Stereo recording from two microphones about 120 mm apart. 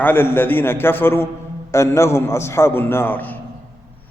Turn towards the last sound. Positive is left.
turn(degrees=15)  # may be behind; listen again after turning